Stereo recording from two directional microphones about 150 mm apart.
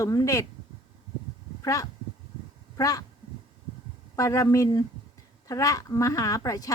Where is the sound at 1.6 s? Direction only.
20° left (ahead or behind).